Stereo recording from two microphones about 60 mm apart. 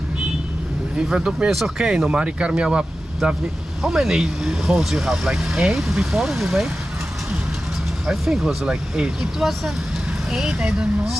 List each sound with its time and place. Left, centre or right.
0.9 s speech: centre
1.5 s speech: centre
1.8 s speech: centre
8.0 s speech: centre